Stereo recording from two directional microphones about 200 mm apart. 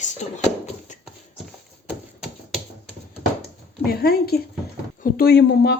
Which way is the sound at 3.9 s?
50° left (ahead or behind).